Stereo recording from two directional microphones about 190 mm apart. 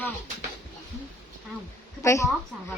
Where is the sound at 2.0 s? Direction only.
15° left (ahead or behind).